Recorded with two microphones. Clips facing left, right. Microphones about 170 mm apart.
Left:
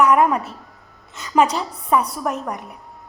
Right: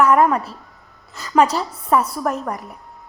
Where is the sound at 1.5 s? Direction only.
Centre (ahead or behind).